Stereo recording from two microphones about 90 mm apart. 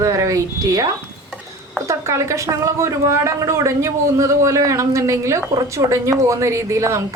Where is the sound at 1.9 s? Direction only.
35° right (ahead or behind).